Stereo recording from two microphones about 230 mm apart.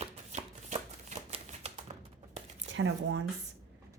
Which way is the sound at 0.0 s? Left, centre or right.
Right.